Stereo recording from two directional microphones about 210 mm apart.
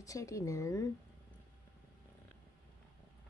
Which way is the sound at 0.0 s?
15° left (ahead or behind).